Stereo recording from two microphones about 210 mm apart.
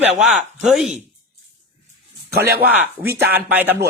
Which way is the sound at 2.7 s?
5° right (ahead or behind).